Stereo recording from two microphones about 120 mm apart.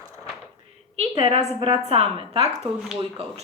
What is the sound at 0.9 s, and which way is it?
A woman's voice, 55° right (ahead or behind).